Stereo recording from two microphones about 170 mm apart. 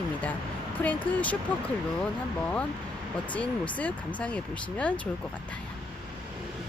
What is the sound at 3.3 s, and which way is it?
Speech, 10° left (ahead or behind).